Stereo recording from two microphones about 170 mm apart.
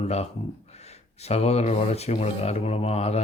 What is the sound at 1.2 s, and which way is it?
Speech, 40° left (ahead or behind).